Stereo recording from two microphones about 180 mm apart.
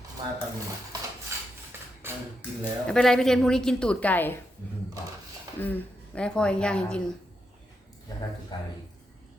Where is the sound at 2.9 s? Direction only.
5° left (ahead or behind).